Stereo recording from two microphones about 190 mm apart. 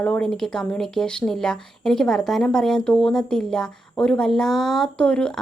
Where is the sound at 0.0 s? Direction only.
5° left (ahead or behind).